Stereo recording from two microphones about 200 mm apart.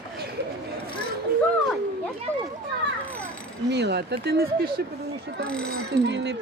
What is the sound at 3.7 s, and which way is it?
Speech, 55° right (ahead or behind).